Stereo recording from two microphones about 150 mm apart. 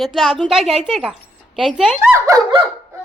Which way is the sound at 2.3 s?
20° right (ahead or behind).